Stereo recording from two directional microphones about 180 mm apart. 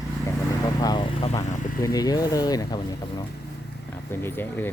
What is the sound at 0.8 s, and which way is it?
Speech, 20° left (ahead or behind).